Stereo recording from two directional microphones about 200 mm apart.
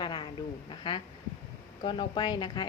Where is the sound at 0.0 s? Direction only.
25° left (ahead or behind).